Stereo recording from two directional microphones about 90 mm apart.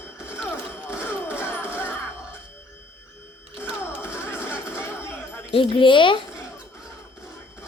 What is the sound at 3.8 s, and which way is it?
Music, 30° left (ahead or behind).